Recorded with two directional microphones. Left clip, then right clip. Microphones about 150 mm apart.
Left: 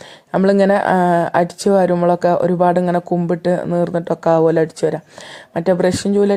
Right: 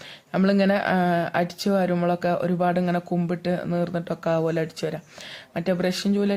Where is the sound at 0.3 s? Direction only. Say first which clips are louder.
Left 9 dB; 35° left (ahead or behind).